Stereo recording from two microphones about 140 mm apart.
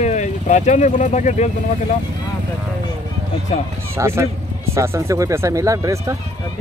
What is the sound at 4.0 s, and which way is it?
Speech, 20° right (ahead or behind).